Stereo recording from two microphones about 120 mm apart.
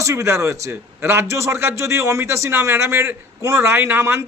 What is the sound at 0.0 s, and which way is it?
A man's voice, 25° right (ahead or behind).